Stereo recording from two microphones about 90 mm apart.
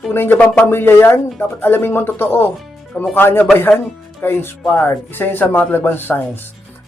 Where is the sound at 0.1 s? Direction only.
25° left (ahead or behind).